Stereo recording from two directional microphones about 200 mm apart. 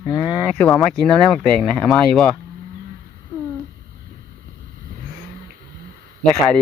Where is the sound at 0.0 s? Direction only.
25° left (ahead or behind).